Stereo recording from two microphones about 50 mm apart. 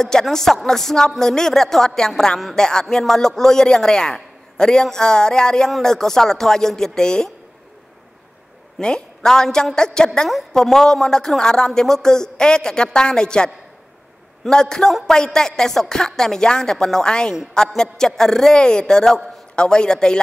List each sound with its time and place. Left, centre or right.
0.0 s a woman's voice: centre
8.8 s a woman's voice: centre
14.5 s a woman's voice: centre